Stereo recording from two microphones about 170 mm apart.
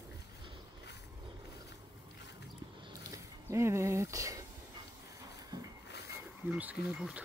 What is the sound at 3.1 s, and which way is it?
Speech, 15° right (ahead or behind).